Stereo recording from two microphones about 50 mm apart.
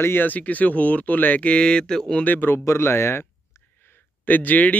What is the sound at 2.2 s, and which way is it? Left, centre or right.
Speech, left.